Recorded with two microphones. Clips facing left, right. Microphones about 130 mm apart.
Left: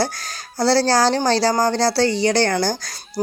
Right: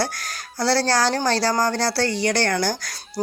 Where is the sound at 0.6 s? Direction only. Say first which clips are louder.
Left 4 dB; 30° left (ahead or behind).